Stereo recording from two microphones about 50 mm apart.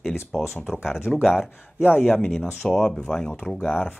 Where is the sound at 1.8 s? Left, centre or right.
Left.